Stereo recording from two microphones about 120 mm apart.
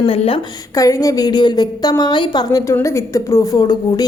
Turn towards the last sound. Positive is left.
turn(degrees=35)  # may be behind; listen again after turning